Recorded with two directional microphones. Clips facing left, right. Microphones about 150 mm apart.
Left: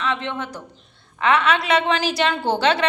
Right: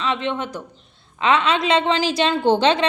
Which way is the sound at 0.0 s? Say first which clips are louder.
Right 2 dB; 20° right (ahead or behind).